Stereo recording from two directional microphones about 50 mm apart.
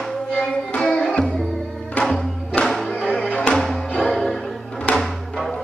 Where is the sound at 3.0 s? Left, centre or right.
Centre.